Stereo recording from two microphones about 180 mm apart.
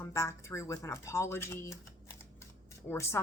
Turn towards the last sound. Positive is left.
turn(degrees=15)  # may be behind; listen again after turning